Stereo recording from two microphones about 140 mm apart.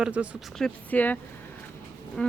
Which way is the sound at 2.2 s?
5° left (ahead or behind).